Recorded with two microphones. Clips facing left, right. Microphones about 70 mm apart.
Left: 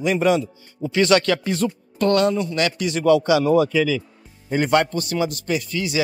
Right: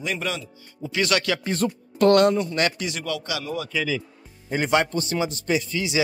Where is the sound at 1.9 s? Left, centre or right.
Right.